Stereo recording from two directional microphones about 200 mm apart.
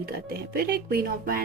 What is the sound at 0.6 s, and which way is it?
Speech, 50° right (ahead or behind).